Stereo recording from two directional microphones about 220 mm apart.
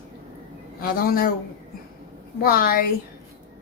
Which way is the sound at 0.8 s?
40° left (ahead or behind).